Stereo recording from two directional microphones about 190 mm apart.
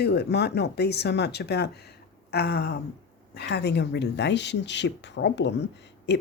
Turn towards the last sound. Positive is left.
turn(degrees=65)  # may be behind; listen again after turning